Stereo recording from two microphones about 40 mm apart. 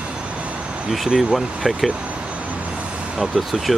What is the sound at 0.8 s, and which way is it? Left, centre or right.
Speech, centre.